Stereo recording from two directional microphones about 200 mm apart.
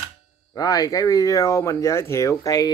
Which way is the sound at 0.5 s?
15° left (ahead or behind).